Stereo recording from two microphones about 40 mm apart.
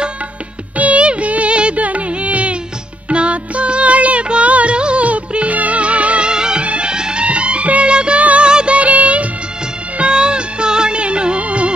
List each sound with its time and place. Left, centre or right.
0.7 s music: right
6.3 s music: centre
8.5 s music of bollywood: right
9.9 s music: right